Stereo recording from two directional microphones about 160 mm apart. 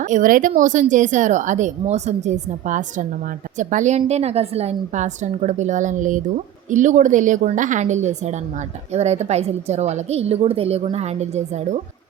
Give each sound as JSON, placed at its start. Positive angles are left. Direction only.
{"t": 0.0, "sound": "a woman's voice", "side_deg": -55}